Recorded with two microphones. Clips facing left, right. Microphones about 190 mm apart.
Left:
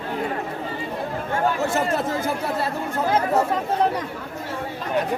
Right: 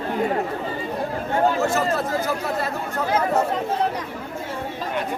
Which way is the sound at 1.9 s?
30° left (ahead or behind).